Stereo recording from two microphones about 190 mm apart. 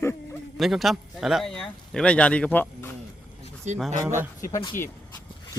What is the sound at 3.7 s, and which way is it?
Speech, 40° right (ahead or behind).